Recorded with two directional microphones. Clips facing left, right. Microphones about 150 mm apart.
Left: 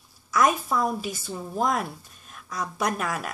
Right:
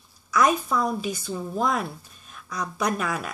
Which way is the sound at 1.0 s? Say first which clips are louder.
Right 3 dB; 5° left (ahead or behind).